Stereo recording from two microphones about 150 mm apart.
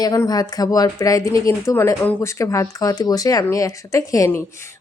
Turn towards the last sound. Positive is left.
turn(degrees=20)  # may be behind; listen again after turning